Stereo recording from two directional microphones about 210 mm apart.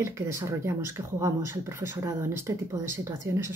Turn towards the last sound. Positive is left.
turn(degrees=-10)  # may be behind; listen again after turning